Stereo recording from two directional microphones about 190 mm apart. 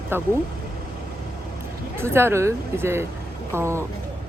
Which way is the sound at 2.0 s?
15° right (ahead or behind).